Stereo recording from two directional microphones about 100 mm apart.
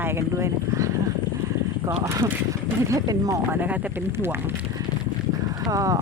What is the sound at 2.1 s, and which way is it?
Speech, 30° right (ahead or behind).